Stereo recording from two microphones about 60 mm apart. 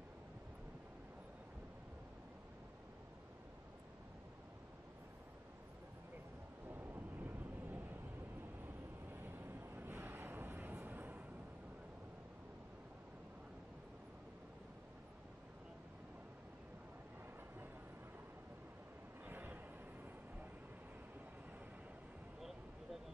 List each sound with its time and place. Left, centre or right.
6.7 s vehicle: right
9.1 s vehicle: right
19.2 s a sound: right